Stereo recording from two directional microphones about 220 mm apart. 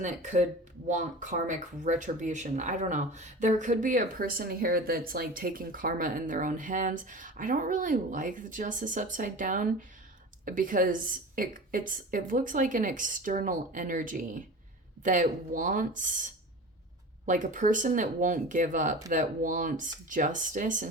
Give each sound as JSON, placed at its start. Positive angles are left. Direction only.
{"t": 0.0, "sound": "speech", "side_deg": -35}